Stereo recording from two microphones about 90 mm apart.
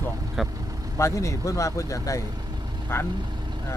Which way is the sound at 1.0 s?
35° left (ahead or behind).